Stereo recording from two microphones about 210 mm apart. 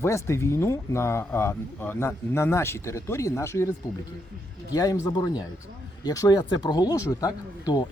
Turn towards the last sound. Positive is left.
turn(degrees=20)  # may be behind; listen again after turning